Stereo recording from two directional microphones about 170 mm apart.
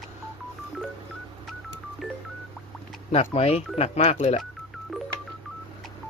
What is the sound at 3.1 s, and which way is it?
Speech, 40° left (ahead or behind).